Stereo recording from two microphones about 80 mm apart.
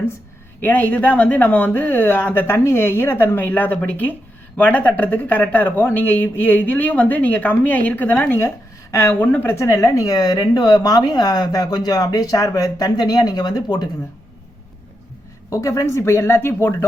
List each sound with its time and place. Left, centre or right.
0.6 s speech: left
8.4 s speech: left
9.1 s speech: centre; by 13.8 s left
15.4 s speech: left